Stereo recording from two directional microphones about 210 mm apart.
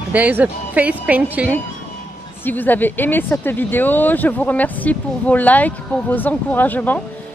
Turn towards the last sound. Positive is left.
turn(degrees=10)  # may be behind; listen again after turning